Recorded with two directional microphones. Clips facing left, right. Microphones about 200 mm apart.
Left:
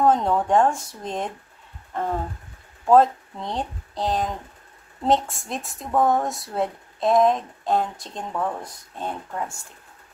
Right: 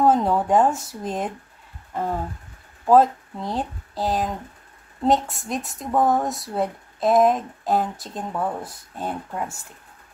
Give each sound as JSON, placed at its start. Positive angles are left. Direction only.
{"t": 0.0, "sound": "a woman's voice", "side_deg": -5}